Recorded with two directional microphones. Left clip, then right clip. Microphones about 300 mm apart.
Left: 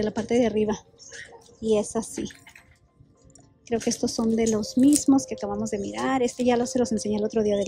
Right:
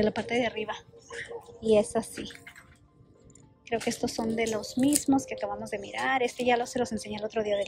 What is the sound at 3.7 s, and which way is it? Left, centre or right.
Speech, centre.